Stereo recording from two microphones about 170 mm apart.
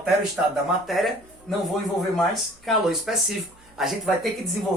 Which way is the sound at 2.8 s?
Centre (ahead or behind).